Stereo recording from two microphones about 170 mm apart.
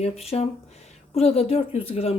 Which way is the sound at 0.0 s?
40° left (ahead or behind).